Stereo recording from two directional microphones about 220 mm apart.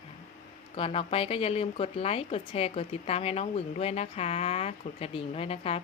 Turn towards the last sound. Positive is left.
turn(degrees=25)  # may be behind; listen again after turning